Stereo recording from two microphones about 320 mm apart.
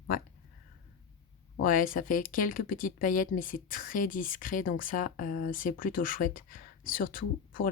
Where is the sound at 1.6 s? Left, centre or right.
Left.